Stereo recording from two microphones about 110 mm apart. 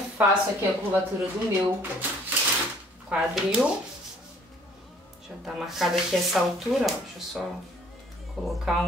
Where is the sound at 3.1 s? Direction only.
5° right (ahead or behind).